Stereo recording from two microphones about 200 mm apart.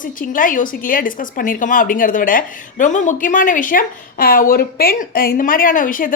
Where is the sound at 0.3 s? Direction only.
45° left (ahead or behind).